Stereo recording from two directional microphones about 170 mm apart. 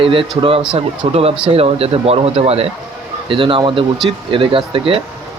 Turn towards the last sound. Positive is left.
turn(degrees=-30)  # may be behind; listen again after turning